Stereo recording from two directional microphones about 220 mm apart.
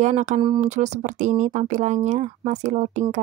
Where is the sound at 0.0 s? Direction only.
35° right (ahead or behind).